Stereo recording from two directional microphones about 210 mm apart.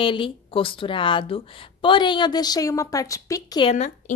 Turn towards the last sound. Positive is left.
turn(degrees=35)  # may be behind; listen again after turning